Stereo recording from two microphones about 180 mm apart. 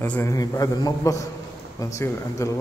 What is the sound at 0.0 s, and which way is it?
A man's voice, 10° left (ahead or behind).